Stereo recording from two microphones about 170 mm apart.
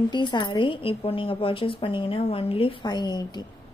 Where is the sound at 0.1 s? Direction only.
25° left (ahead or behind).